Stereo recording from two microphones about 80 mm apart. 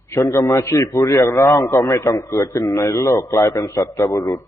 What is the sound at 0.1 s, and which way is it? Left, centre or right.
A man's voice, left.